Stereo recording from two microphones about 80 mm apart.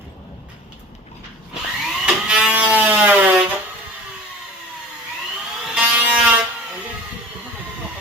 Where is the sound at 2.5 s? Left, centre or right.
Right.